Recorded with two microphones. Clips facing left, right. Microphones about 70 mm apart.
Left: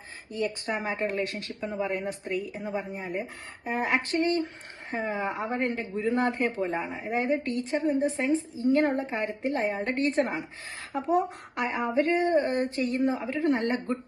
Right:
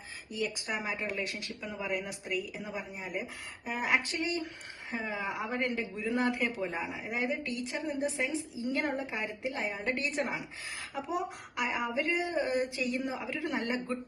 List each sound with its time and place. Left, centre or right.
0.3 s speech: left